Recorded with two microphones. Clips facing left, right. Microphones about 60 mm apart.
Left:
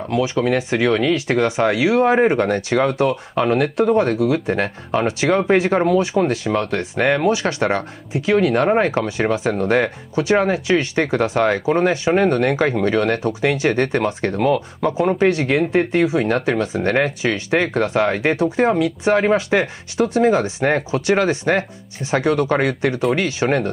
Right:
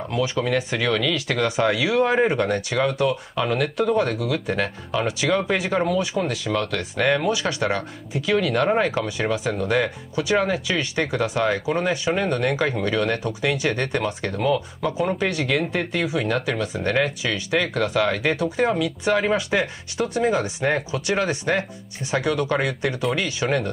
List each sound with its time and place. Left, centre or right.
0.2 s speech: left